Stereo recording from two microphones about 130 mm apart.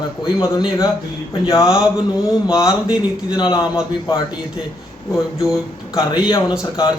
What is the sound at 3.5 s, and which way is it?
Speech, 25° left (ahead or behind).